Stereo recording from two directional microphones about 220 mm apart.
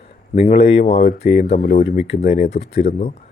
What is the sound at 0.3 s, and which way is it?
Speech, 25° left (ahead or behind).